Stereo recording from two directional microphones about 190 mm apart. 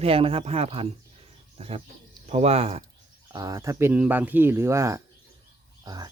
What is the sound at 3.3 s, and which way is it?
Speech, 20° right (ahead or behind).